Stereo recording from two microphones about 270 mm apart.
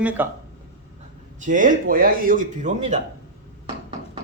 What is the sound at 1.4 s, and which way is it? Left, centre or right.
Speech, right.